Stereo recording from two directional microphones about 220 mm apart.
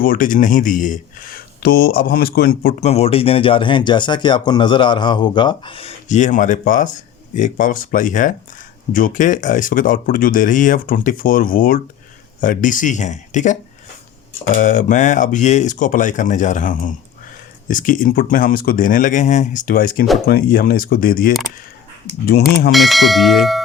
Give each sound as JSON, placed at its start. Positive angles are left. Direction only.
{"t": 0.0, "sound": "speech", "side_deg": 40}
{"t": 2.9, "sound": "speech", "side_deg": 25}
{"t": 22.7, "sound": "speech", "side_deg": 0}